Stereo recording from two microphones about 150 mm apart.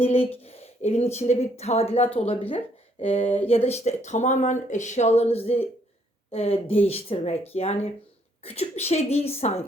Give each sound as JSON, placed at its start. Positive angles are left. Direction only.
{"t": 0.0, "sound": "speech", "side_deg": 40}